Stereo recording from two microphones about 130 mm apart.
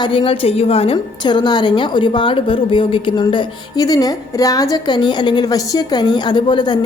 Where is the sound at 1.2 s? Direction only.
35° left (ahead or behind).